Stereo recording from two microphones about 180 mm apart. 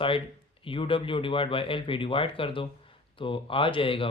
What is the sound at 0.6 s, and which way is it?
Speech, 30° left (ahead or behind).